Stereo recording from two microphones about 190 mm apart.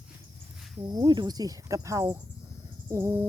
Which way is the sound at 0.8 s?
20° right (ahead or behind).